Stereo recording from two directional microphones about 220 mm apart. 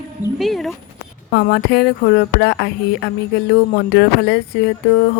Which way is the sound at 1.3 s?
45° left (ahead or behind).